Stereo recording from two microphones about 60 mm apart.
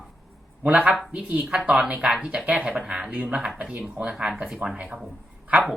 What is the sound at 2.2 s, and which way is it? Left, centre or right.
Speech, right.